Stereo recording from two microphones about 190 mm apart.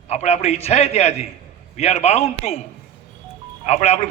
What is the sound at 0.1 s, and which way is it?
A man's voice, 35° left (ahead or behind).